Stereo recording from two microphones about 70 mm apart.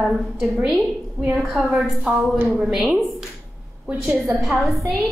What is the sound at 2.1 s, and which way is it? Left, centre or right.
Speech, centre.